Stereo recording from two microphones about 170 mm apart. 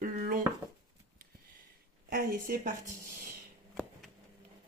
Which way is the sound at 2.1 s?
55° right (ahead or behind).